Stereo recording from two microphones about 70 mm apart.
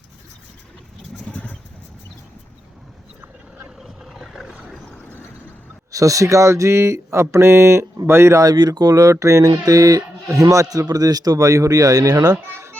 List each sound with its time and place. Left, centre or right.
1.3 s vehicle: left
3.8 s a sound: centre
5.9 s speech: right
8.4 s speech: right
12.5 s children playing: right